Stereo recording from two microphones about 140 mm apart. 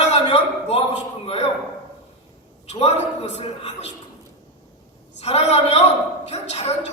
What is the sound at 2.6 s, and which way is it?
A woman's voice, 50° left (ahead or behind).